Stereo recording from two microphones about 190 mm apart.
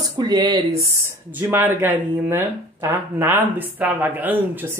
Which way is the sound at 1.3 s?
10° right (ahead or behind).